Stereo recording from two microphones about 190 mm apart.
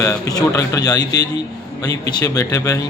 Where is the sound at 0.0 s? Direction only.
20° left (ahead or behind).